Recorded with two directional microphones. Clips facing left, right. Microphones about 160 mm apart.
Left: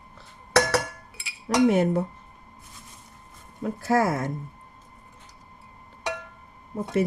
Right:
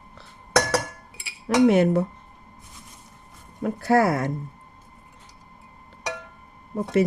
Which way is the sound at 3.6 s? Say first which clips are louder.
Right 3 dB; 65° right (ahead or behind).